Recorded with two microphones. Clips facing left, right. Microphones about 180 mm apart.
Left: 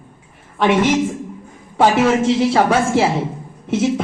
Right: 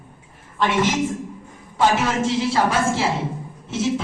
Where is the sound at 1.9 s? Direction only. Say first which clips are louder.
Left 6 dB; 65° left (ahead or behind).